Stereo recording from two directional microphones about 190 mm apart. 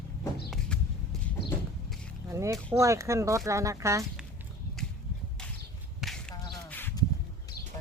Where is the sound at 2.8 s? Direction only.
15° right (ahead or behind).